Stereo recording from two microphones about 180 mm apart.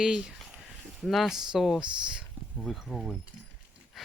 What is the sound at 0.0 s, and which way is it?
Speech, 5° right (ahead or behind).